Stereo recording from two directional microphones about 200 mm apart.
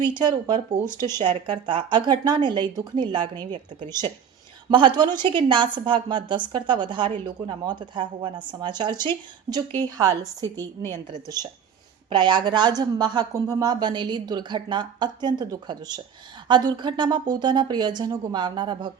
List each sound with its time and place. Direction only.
0.0 s a woman's voice: 20° right (ahead or behind)
12.0 s speech: 20° right (ahead or behind)